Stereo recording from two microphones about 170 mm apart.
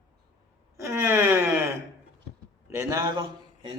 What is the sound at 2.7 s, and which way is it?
A man's voice, 20° right (ahead or behind).